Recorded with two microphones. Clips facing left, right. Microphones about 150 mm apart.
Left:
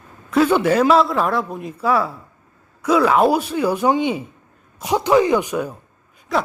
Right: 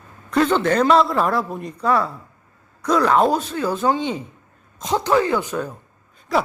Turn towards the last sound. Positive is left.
turn(degrees=0)  # may be behind; listen again after turning